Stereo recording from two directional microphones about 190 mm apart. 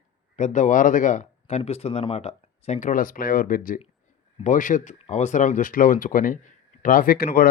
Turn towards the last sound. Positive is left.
turn(degrees=50)  # may be behind; listen again after turning